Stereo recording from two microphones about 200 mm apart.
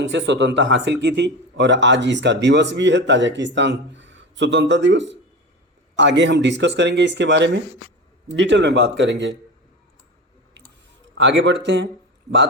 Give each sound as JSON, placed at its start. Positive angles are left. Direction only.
{"t": 0.1, "sound": "speech", "side_deg": -65}
{"t": 11.1, "sound": "speech", "side_deg": -65}
{"t": 12.3, "sound": "a man's voice", "side_deg": 0}